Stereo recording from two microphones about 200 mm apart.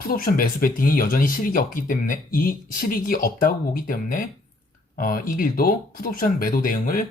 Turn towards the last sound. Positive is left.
turn(degrees=45)  # may be behind; listen again after turning